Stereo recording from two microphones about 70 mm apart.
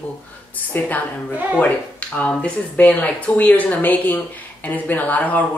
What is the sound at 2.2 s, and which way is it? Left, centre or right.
A woman's voice, left.